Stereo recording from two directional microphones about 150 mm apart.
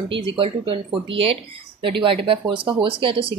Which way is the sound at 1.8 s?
35° right (ahead or behind).